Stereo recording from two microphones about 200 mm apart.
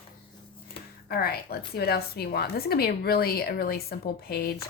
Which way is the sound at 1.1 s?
50° left (ahead or behind).